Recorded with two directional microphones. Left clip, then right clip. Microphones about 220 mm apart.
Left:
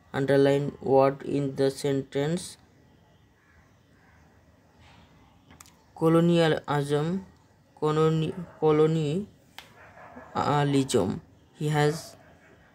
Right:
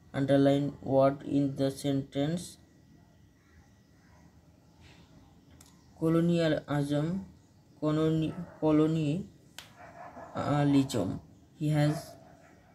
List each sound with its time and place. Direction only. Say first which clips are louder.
0.1 s speech: left 4 dB; 50° left (ahead or behind)
5.9 s speech: left 6 dB; 50° left (ahead or behind)
10.3 s speech: left 4 dB; 50° left (ahead or behind)